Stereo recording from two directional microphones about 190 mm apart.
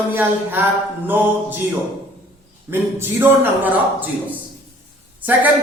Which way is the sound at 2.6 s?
10° right (ahead or behind).